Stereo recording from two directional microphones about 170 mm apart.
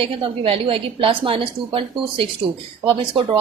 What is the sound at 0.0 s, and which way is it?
A woman's voice, 30° right (ahead or behind).